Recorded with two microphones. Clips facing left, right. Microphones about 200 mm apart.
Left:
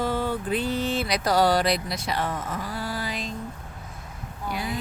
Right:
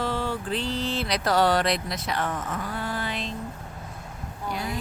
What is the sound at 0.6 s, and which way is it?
Speech, 55° left (ahead or behind).